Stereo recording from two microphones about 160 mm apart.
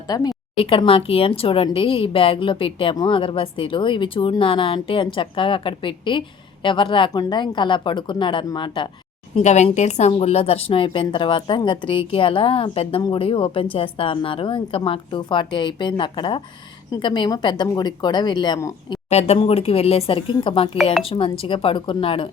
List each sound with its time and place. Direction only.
0.1 s a woman's voice: 25° left (ahead or behind)
0.5 s speech: 35° left (ahead or behind)
9.3 s a woman's voice: 45° left (ahead or behind); by 18.9 s 25° left (ahead or behind)
19.1 s speech: 40° left (ahead or behind)